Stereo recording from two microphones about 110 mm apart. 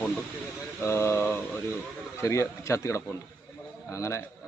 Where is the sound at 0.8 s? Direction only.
25° left (ahead or behind).